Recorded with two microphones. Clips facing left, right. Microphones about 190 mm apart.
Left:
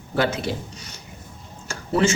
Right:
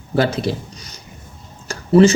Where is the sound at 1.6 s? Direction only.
35° right (ahead or behind).